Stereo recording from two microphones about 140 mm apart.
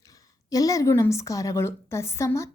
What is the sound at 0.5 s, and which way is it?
A woman's voice, 25° left (ahead or behind).